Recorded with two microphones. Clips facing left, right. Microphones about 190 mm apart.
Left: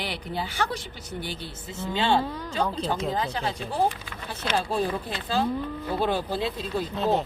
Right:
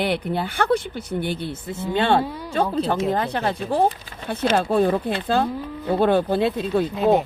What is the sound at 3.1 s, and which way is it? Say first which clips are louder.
Speech: right 6 dB; 60° right (ahead or behind).